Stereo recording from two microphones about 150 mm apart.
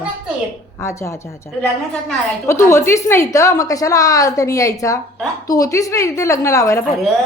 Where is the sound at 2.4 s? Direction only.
20° left (ahead or behind).